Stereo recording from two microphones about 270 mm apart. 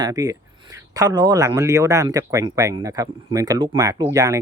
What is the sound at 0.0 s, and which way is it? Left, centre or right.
A man's voice, centre.